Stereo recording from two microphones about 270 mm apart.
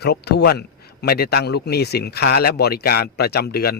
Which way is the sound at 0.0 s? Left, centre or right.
Left.